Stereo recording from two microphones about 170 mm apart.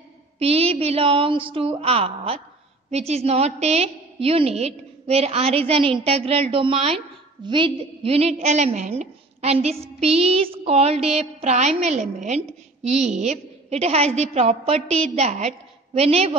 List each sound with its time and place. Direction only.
0.4 s a woman's voice: 35° right (ahead or behind)